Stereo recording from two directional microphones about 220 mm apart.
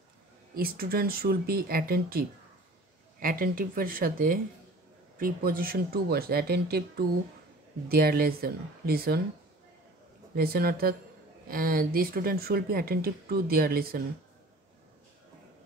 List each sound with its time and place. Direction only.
0.6 s speech: 45° right (ahead or behind)
10.3 s speech: 45° right (ahead or behind)